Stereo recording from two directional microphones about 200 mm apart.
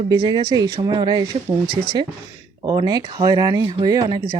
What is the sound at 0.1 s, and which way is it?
Speech, 20° right (ahead or behind).